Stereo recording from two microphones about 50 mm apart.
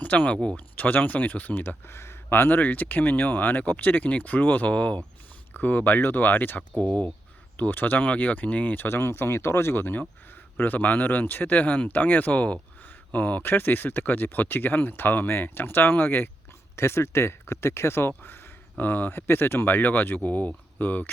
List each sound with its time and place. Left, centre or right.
0.0 s speech: left
1.9 s speech: left
6.6 s speech: left
7.5 s speech: left
9.0 s speech: left
9.7 s speech: left
16.7 s speech: left
18.8 s speech: left